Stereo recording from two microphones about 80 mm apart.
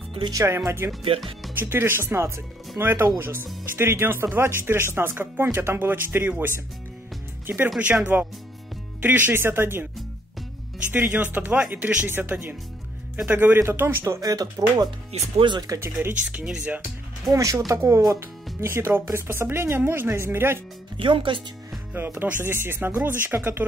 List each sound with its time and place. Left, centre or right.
0.3 s speech: right
10.9 s speech: right
14.0 s speech: right
15.8 s speech: right
16.3 s speech: centre
17.3 s speech: right
21.0 s speech: right
21.9 s speech: right